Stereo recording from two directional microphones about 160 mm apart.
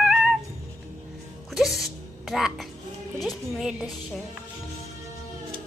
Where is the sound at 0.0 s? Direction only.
5° right (ahead or behind).